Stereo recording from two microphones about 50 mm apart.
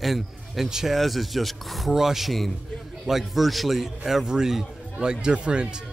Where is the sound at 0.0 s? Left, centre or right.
Centre.